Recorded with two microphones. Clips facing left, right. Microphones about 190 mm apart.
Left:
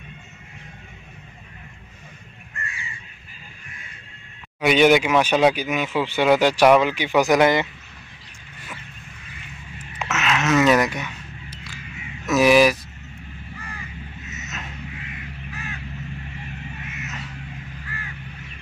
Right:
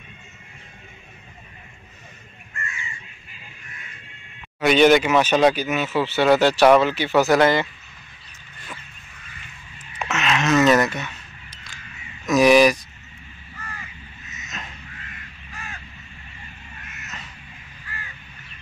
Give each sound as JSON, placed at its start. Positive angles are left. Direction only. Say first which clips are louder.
{"t": 2.5, "sound": "crow", "louder": "right 1 dB", "side_deg": 35}
{"t": 4.6, "sound": "speech", "louder": "right 1 dB", "side_deg": 10}
{"t": 10.0, "sound": "a sound", "louder": "right 1 dB", "side_deg": 5}
{"t": 11.5, "sound": "crow", "louder": "left 7 dB", "side_deg": 5}
{"t": 12.3, "sound": "speech", "louder": "right 1 dB", "side_deg": 5}